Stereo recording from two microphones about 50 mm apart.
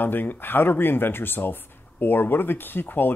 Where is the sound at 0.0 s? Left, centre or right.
Left.